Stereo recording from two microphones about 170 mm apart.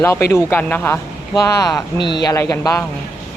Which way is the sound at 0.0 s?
15° left (ahead or behind).